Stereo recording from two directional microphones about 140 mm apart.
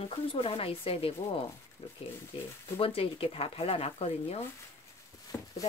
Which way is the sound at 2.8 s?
40° left (ahead or behind).